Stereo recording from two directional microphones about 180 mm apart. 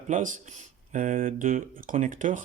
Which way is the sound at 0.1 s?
45° right (ahead or behind).